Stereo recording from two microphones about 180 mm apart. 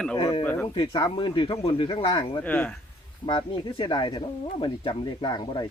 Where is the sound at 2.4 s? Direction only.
10° left (ahead or behind).